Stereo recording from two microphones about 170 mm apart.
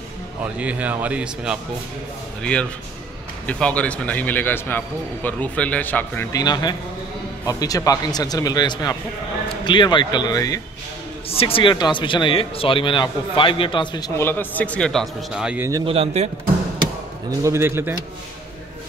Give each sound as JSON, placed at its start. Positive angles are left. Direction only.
{"t": 0.4, "sound": "a man's voice", "side_deg": -10}
{"t": 3.4, "sound": "a man's voice", "side_deg": 5}
{"t": 6.3, "sound": "speech", "side_deg": 25}
{"t": 11.2, "sound": "speech", "side_deg": 35}
{"t": 15.8, "sound": "a man's voice", "side_deg": -35}
{"t": 17.3, "sound": "a man's voice", "side_deg": -15}